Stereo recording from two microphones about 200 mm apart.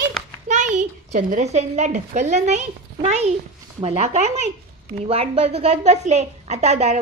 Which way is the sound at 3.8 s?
35° right (ahead or behind).